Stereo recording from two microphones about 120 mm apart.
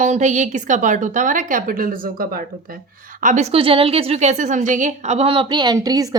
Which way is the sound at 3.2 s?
80° right.